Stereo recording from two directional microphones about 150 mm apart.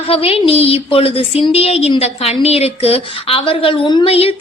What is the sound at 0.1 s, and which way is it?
A woman's voice, 40° left (ahead or behind).